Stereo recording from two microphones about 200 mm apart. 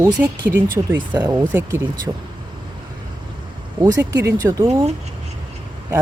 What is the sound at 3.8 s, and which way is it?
Speech, 25° right (ahead or behind).